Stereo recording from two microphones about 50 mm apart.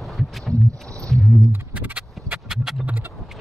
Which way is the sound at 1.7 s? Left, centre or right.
Right.